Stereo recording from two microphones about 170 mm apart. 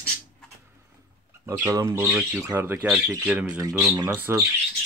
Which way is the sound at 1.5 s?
20° right (ahead or behind).